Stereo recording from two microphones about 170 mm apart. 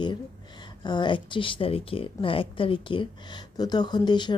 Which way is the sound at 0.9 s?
25° left (ahead or behind).